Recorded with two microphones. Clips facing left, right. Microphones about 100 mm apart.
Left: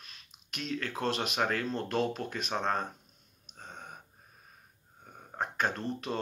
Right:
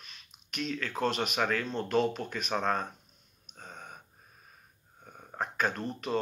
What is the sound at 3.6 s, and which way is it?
Gasp, 30° left (ahead or behind).